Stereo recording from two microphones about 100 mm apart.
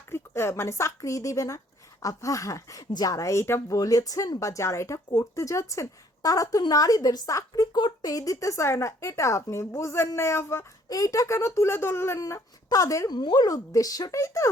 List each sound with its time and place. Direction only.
0.1 s speech: 25° left (ahead or behind); by 8.1 s 45° left (ahead or behind)
8.1 s speech: 35° left (ahead or behind)
13.1 s speech: 45° left (ahead or behind); by 14.5 s 30° left (ahead or behind)